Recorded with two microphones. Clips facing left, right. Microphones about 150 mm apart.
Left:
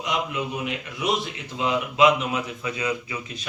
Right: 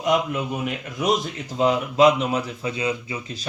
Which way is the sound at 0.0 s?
50° right (ahead or behind).